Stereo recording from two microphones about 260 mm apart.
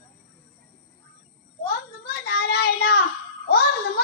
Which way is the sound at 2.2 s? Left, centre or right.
Left.